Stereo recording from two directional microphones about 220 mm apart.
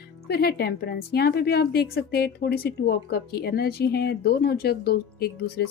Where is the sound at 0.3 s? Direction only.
45° left (ahead or behind).